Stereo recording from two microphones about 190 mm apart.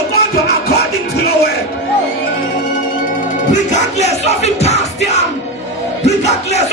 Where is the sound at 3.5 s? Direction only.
40° left (ahead or behind).